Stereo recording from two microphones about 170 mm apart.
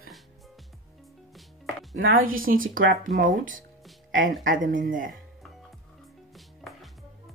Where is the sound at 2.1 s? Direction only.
55° right (ahead or behind).